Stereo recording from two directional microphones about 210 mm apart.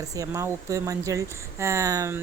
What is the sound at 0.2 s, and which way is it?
Speech, 15° right (ahead or behind).